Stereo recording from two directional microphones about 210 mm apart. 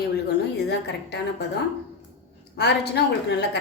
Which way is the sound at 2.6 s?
55° left (ahead or behind).